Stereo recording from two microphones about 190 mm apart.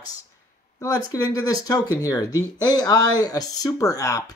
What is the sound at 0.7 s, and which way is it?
Speech, 20° left (ahead or behind).